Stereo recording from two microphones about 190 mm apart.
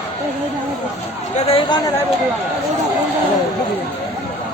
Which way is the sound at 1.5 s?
25° left (ahead or behind).